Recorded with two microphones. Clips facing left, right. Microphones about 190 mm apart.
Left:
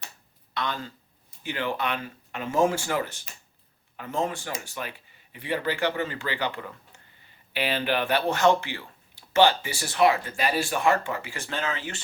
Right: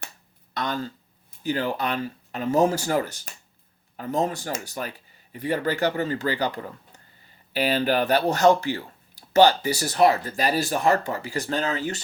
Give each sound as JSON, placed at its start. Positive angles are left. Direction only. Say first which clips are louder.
{"t": 0.5, "sound": "speech", "louder": "right 3 dB", "side_deg": -40}